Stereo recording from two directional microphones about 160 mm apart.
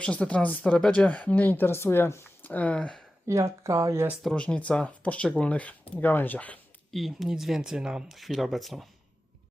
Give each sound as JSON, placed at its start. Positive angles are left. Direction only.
{"t": 0.0, "sound": "speech", "side_deg": 5}
{"t": 3.2, "sound": "speech", "side_deg": -20}
{"t": 4.2, "sound": "speech", "side_deg": 5}